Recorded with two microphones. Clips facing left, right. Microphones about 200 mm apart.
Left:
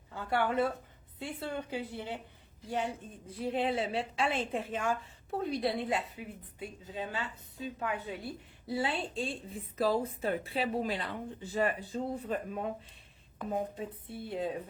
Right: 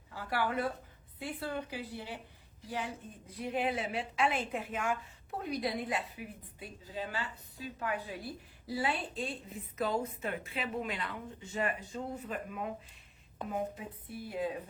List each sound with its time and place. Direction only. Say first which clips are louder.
0.1 s a woman's voice: left 3 dB; 25° left (ahead or behind)